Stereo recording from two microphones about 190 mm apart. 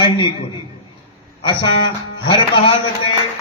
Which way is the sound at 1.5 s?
25° left (ahead or behind).